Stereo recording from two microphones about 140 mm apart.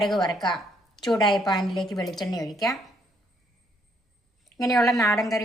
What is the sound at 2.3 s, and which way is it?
Speech, 25° left (ahead or behind).